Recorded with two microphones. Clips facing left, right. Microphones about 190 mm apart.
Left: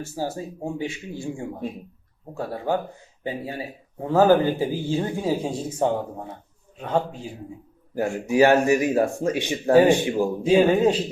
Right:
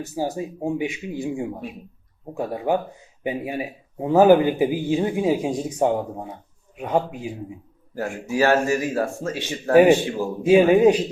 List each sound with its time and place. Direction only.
0.0 s speech: 15° right (ahead or behind)
7.9 s speech: 15° left (ahead or behind)
9.7 s speech: 15° right (ahead or behind)
10.0 s speech: 15° left (ahead or behind)
10.5 s speech: 15° right (ahead or behind)